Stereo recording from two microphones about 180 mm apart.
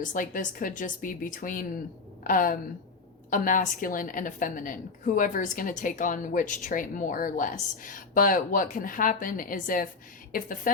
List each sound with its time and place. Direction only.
0.0 s a woman's voice: 45° left (ahead or behind)